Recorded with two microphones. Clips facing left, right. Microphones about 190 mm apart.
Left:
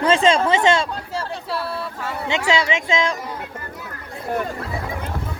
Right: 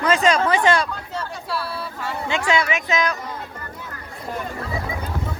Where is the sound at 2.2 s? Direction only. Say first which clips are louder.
Left 1 dB; 25° left (ahead or behind).